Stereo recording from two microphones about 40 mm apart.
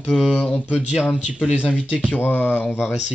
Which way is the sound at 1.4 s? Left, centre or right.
Right.